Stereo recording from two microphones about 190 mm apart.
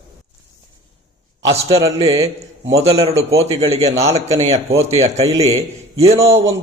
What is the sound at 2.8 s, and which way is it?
A man's voice, 35° right (ahead or behind).